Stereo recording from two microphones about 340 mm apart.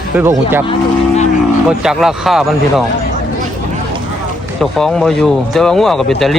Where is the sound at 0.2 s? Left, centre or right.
Centre.